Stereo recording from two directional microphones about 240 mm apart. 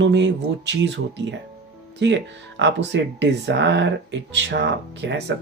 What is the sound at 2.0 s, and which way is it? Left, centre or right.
Speech, right.